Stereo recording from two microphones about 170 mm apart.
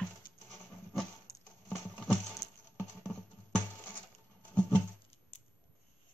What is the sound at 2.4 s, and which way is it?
Music, 20° left (ahead or behind).